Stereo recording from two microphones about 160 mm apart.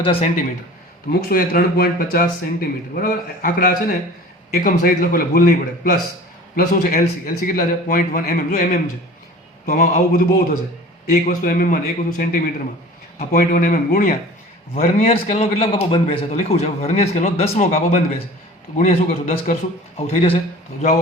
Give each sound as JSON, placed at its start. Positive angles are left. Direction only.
{"t": 0.0, "sound": "a man's voice", "side_deg": 35}
{"t": 1.2, "sound": "a man's voice", "side_deg": 70}
{"t": 14.8, "sound": "a man's voice", "side_deg": 50}